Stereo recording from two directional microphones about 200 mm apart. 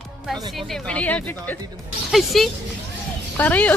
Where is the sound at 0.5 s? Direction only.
5° left (ahead or behind).